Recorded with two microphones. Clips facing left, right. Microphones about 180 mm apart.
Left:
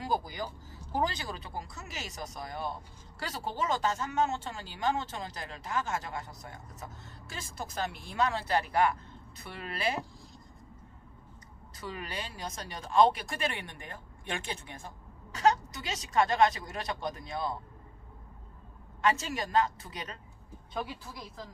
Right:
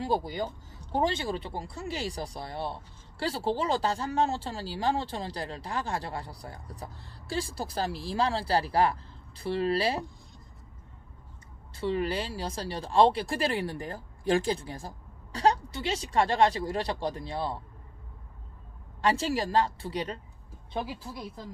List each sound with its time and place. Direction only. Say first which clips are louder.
0.0 s speech: right 4 dB; 30° right (ahead or behind)
11.7 s speech: right 11 dB; 30° right (ahead or behind)
18.9 s speech: right 3 dB; 35° right (ahead or behind)